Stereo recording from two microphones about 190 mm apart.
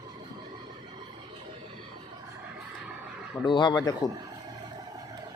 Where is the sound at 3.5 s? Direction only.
25° left (ahead or behind).